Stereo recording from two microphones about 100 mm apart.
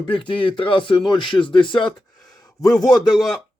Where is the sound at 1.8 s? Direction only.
5° left (ahead or behind).